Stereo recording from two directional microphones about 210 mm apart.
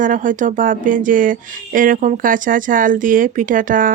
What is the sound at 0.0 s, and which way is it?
Speech, 40° right (ahead or behind).